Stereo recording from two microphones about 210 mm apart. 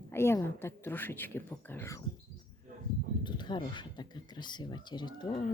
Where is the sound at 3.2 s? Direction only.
20° left (ahead or behind).